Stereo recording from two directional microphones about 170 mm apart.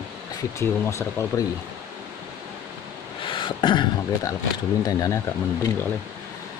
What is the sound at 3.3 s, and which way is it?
Speech, 25° left (ahead or behind).